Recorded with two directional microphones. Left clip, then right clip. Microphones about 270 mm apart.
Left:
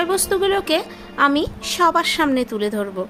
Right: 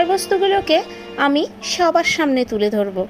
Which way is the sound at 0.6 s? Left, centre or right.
Left.